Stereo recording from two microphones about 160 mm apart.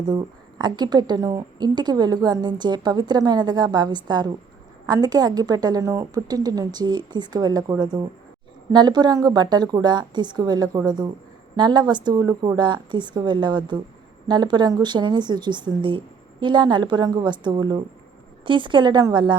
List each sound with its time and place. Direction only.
0.0 s a woman's voice: 25° right (ahead or behind)